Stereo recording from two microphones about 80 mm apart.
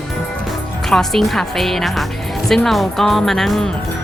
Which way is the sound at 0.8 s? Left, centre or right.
Centre.